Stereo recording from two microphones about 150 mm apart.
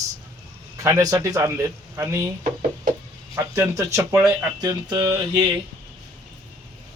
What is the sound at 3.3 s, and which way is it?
Speech, 20° right (ahead or behind).